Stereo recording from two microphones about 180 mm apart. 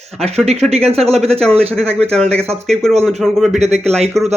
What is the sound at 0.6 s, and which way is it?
Speech, 35° right (ahead or behind).